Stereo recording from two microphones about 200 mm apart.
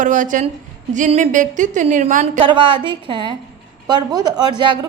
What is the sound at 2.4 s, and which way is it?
A woman's voice, 25° right (ahead or behind).